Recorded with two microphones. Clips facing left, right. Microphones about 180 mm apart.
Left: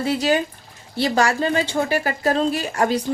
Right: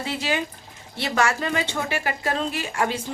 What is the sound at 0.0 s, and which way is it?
A woman's voice, 40° left (ahead or behind).